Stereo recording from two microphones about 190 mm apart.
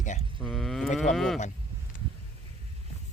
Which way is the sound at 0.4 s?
Centre (ahead or behind).